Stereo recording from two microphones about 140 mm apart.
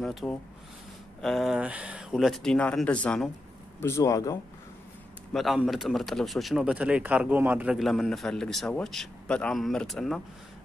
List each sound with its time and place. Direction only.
0.0 s speech: centre (ahead or behind)
3.8 s speech: 20° left (ahead or behind)
5.3 s speech: centre (ahead or behind)